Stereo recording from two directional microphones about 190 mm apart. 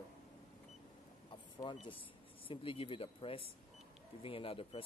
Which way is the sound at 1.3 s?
25° left (ahead or behind).